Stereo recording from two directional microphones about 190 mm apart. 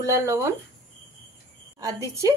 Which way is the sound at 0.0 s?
15° right (ahead or behind).